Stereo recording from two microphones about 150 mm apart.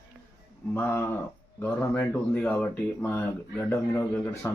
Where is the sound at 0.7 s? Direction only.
15° left (ahead or behind).